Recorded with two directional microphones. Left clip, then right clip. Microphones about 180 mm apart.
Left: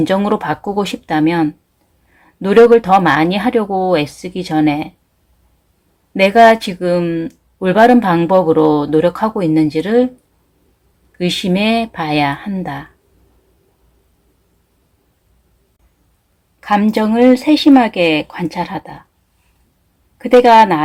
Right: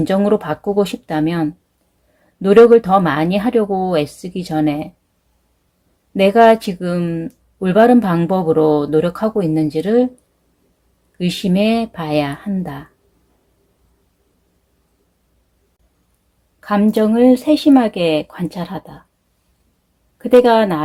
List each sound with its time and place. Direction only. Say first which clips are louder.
0.0 s speech: left 1 dB; 35° right (ahead or behind)
6.1 s speech: left 2 dB; 35° right (ahead or behind)
11.2 s speech: left 2 dB; 35° right (ahead or behind)
16.6 s speech: left 1 dB; 30° right (ahead or behind)
20.4 s speech: left 5 dB; 30° right (ahead or behind)